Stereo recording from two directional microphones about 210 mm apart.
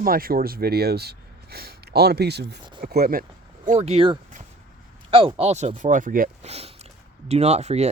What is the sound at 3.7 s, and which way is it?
Speech, 30° right (ahead or behind).